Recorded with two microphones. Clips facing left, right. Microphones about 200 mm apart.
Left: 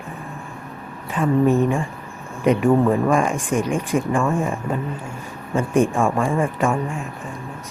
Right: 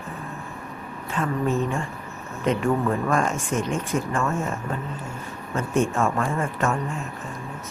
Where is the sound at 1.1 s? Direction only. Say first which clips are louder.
Left 7 dB; 15° left (ahead or behind).